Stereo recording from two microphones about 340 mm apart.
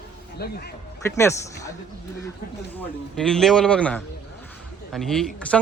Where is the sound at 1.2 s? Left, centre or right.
Centre.